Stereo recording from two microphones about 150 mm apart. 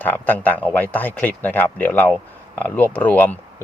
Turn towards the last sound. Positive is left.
turn(degrees=10)  # may be behind; listen again after turning